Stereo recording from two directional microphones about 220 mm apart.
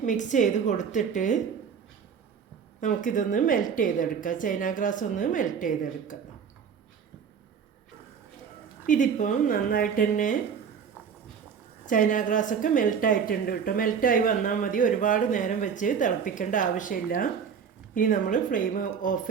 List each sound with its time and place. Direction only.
0.0 s a woman's voice: 35° left (ahead or behind)
2.8 s a woman's voice: 35° left (ahead or behind)
8.9 s a woman's voice: 35° left (ahead or behind)
11.9 s a woman's voice: 35° left (ahead or behind)